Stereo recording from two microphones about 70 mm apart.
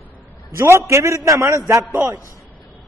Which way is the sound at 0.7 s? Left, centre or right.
Right.